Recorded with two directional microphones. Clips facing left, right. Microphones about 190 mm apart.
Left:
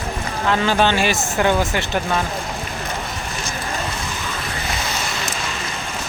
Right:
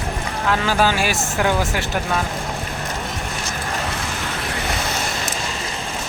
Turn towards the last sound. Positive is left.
turn(degrees=-55)  # may be behind; listen again after turning